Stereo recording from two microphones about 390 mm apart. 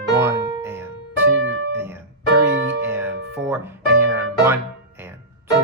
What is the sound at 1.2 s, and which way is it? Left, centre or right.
Music, right.